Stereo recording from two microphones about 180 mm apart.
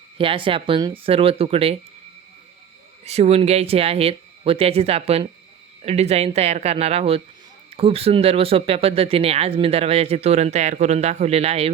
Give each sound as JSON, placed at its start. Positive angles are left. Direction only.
{"t": 0.2, "sound": "speech", "side_deg": -30}
{"t": 3.0, "sound": "speech", "side_deg": -35}